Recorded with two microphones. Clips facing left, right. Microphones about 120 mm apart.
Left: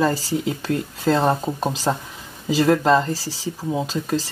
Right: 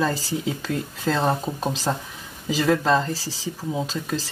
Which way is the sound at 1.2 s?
15° left (ahead or behind).